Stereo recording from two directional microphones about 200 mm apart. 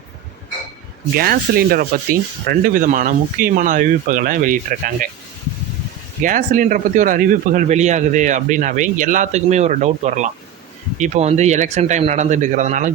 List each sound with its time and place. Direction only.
1.1 s speech: 50° right (ahead or behind)
6.2 s speech: 40° right (ahead or behind)